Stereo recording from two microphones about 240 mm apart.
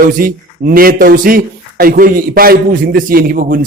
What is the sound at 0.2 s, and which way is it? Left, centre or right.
Speech, right.